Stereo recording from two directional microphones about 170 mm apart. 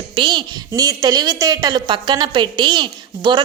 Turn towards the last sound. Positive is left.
turn(degrees=-25)  # may be behind; listen again after turning